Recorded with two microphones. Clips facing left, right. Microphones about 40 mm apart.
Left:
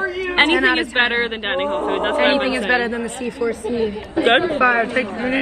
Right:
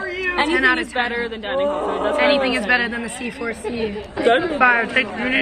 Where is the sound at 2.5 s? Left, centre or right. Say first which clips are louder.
Even; right.